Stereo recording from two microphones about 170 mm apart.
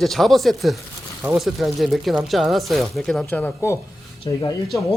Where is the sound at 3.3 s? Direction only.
10° left (ahead or behind).